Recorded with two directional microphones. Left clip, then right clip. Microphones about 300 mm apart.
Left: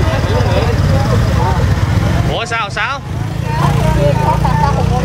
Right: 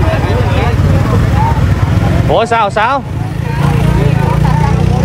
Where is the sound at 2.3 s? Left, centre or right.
Centre.